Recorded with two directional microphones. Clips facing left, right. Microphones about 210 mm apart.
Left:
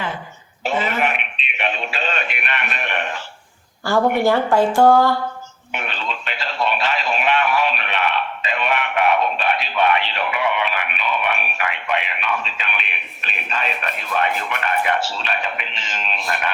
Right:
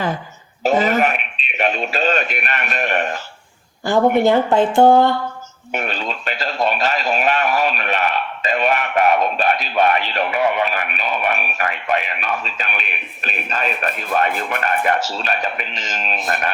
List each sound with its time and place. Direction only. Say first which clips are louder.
0.6 s speech: right 5 dB; 40° right (ahead or behind)
1.5 s radio: right 5 dB; 40° right (ahead or behind)
3.9 s speech: right 3 dB; 20° right (ahead or behind)
5.7 s speech: right 4 dB; 40° right (ahead or behind)